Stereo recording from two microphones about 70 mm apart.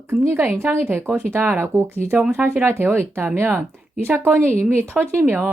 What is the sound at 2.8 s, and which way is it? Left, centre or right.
Speech, right.